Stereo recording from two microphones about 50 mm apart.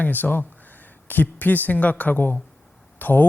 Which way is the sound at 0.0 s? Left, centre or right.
Left.